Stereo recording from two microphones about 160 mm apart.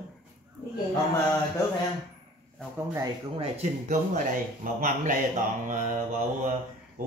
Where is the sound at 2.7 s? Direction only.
20° right (ahead or behind).